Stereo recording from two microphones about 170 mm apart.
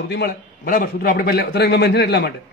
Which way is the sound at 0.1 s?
65° left (ahead or behind).